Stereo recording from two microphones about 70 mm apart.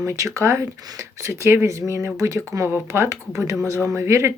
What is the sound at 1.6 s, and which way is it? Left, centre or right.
Speech, right.